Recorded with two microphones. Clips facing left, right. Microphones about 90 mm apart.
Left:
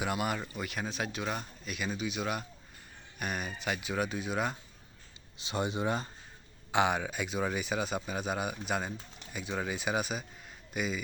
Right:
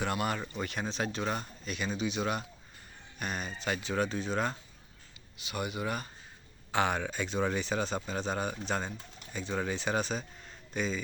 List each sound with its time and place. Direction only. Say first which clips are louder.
0.0 s a man's voice: even; 10° left (ahead or behind)
5.4 s a man's voice: left 3 dB; 30° left (ahead or behind); by 11.0 s 10° left (ahead or behind)